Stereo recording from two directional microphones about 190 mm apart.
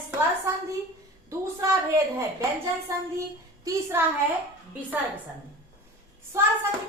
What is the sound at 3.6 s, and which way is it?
Speech, 15° right (ahead or behind).